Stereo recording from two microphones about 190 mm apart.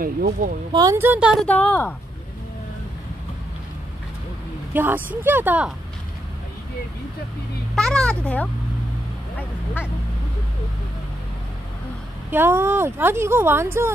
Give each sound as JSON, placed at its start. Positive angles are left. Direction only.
{"t": 0.0, "sound": "speech", "side_deg": -45}
{"t": 0.7, "sound": "a woman's voice", "side_deg": -15}
{"t": 4.7, "sound": "speech", "side_deg": -10}
{"t": 7.7, "sound": "a woman's voice", "side_deg": 5}
{"t": 12.3, "sound": "speech", "side_deg": -10}